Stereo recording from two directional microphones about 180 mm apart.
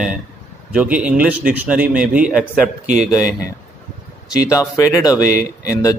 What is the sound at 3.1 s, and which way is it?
Speech, 20° left (ahead or behind).